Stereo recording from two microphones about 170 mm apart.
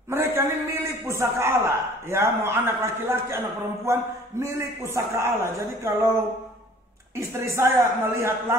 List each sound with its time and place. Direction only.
0.1 s a sound: 15° right (ahead or behind)
2.0 s a man's voice: 15° right (ahead or behind)
7.2 s a man's voice: 15° right (ahead or behind)